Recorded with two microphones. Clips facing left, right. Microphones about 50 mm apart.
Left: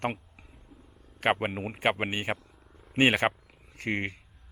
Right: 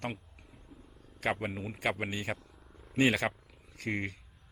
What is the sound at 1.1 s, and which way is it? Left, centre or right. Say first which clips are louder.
A man's voice: left 6 dB; left.